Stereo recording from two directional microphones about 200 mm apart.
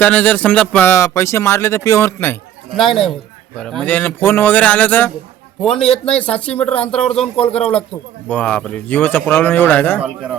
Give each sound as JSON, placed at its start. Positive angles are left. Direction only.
{"t": 0.0, "sound": "speech", "side_deg": 5}
{"t": 2.7, "sound": "speech", "side_deg": 0}
{"t": 7.3, "sound": "speech", "side_deg": 30}
{"t": 7.6, "sound": "speech", "side_deg": 5}